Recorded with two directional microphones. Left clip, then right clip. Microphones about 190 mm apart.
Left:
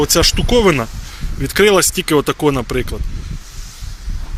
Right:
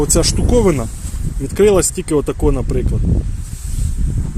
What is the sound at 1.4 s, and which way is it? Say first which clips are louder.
Speech: left 1 dB; 5° right (ahead or behind).